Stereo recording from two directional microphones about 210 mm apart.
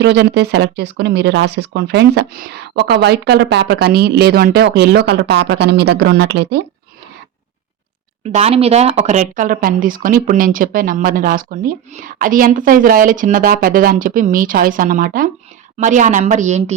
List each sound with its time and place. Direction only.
0.0 s speech: 55° right (ahead or behind)
8.2 s speech: 30° right (ahead or behind)